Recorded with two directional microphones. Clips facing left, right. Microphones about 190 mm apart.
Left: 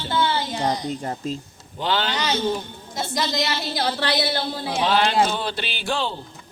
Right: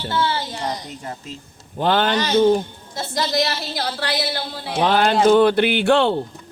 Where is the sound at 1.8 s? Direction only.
50° right (ahead or behind).